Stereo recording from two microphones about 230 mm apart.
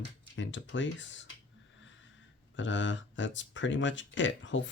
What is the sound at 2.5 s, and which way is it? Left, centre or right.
Speech, left.